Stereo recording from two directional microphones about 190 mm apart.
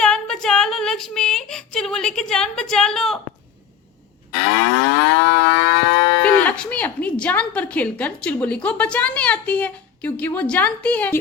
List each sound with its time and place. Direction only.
0.0 s a sound: 5° left (ahead or behind)
4.3 s livestock: 55° left (ahead or behind)
6.2 s a woman's voice: 10° left (ahead or behind)